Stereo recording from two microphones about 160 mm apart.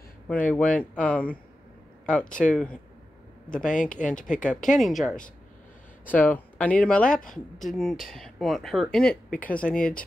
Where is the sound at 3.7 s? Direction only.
55° left (ahead or behind).